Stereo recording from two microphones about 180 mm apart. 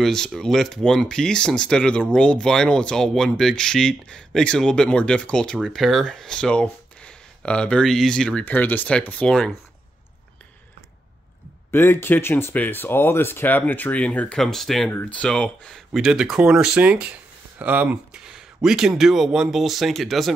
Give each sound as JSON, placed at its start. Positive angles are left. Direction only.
{"t": 0.0, "sound": "speech", "side_deg": 0}
{"t": 11.7, "sound": "speech", "side_deg": 10}